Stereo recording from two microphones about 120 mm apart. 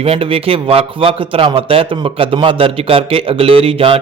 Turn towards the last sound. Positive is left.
turn(degrees=-50)  # may be behind; listen again after turning